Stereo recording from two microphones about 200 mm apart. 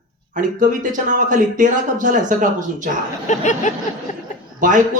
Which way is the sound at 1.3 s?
40° right (ahead or behind).